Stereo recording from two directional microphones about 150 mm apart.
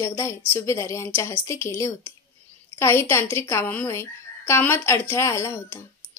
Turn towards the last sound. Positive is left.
turn(degrees=20)  # may be behind; listen again after turning